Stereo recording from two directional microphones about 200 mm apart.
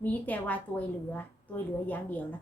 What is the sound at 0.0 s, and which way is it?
A woman's voice, 10° left (ahead or behind).